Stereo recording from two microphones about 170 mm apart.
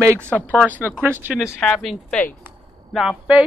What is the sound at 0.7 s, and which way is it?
Speech, 10° left (ahead or behind).